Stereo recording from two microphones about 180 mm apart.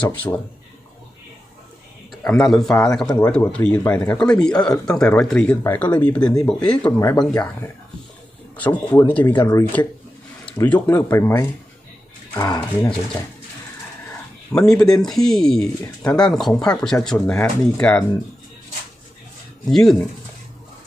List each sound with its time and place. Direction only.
0.1 s speech: 10° left (ahead or behind)
2.2 s speech: centre (ahead or behind)
8.5 s speech: 10° left (ahead or behind)
14.5 s speech: 5° left (ahead or behind)
19.7 s speech: centre (ahead or behind)